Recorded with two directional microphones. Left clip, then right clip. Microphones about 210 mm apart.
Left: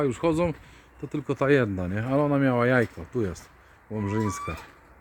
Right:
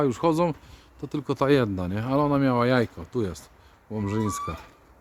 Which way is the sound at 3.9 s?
15° right (ahead or behind).